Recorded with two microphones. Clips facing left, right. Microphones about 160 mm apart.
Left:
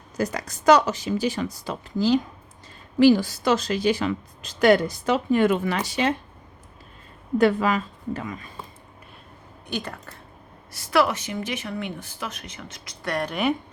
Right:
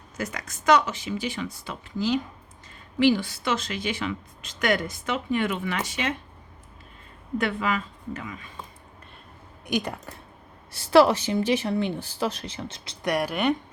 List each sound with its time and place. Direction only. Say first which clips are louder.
0.2 s a woman's voice: left 6 dB; 35° left (ahead or behind)
7.3 s a woman's voice: left 6 dB; 40° left (ahead or behind)
9.6 s speech: right 4 dB; 15° right (ahead or behind)
10.7 s speech: right 4 dB; 30° right (ahead or behind)
13.1 s speech: right 2 dB; 10° right (ahead or behind)
13.3 s speech: left 3 dB; centre (ahead or behind)